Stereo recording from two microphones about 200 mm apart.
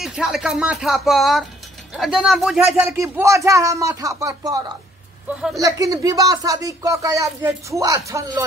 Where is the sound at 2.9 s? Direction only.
15° right (ahead or behind).